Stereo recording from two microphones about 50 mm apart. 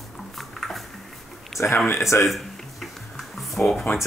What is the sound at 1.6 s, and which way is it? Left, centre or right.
Speech, left.